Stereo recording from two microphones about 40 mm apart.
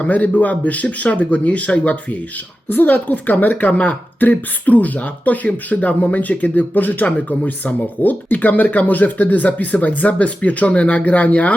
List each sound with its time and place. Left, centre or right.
0.0 s speech: left
2.6 s a woman's voice: left